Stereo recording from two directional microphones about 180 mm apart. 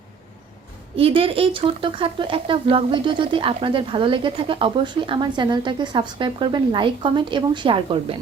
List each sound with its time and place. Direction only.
0.9 s speech: 30° right (ahead or behind)